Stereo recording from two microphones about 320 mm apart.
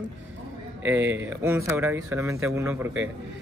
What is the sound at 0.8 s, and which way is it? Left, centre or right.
Speech, centre.